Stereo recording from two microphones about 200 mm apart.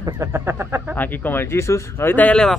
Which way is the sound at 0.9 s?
10° left (ahead or behind).